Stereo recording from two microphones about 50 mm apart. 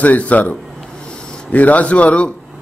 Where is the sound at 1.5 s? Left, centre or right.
Left.